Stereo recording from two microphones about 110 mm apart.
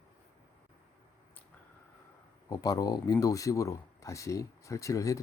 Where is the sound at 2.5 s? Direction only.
35° left (ahead or behind).